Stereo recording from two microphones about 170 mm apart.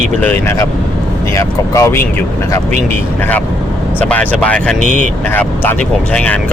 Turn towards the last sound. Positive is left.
turn(degrees=5)  # may be behind; listen again after turning